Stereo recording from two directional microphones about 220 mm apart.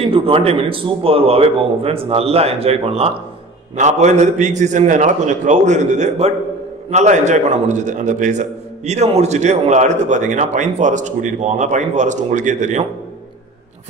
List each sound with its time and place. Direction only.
0.0 s a man's voice: 25° right (ahead or behind)